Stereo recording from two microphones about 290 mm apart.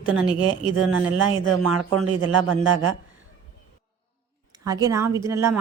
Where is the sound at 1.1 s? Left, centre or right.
Right.